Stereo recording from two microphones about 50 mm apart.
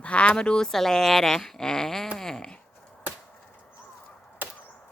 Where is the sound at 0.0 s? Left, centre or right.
Left.